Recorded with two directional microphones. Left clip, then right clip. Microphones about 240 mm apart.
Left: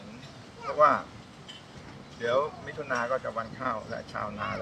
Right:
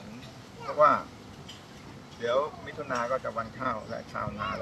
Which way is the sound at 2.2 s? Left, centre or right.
Centre.